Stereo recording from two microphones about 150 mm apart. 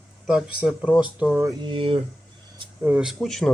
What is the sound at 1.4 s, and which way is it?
Speech, 30° right (ahead or behind).